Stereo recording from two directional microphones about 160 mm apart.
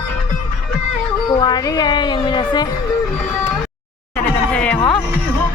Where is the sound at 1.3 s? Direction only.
25° left (ahead or behind).